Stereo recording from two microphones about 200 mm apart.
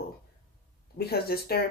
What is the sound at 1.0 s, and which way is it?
Speech, 50° left (ahead or behind).